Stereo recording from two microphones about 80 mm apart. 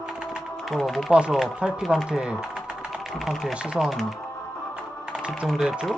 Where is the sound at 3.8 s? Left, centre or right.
Centre.